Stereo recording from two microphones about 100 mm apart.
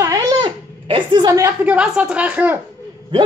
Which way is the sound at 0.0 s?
35° right (ahead or behind).